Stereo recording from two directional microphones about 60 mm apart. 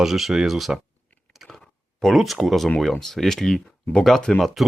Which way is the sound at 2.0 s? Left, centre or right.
Centre.